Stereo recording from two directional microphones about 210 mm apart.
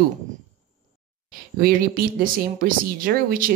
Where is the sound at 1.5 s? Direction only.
45° right (ahead or behind).